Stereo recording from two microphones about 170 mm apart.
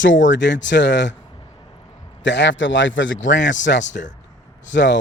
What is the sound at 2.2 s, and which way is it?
A man's voice, 90° left.